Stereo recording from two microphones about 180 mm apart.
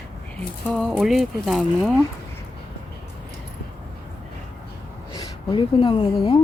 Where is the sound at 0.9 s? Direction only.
Centre (ahead or behind).